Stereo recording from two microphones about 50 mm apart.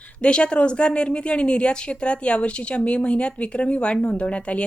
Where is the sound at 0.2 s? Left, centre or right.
Centre.